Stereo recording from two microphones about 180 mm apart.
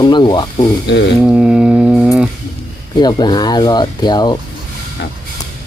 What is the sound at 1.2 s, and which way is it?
Music, 5° right (ahead or behind).